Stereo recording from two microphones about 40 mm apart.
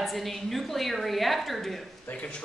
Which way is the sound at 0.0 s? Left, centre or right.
Centre.